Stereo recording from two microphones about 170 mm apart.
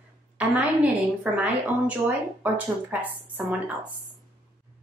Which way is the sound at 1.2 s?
10° right (ahead or behind).